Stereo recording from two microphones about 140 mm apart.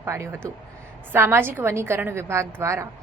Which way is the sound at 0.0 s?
20° right (ahead or behind).